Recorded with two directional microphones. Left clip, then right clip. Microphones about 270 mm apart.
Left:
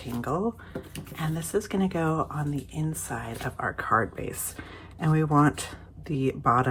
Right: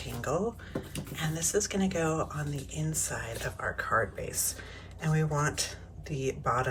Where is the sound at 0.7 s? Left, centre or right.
Centre.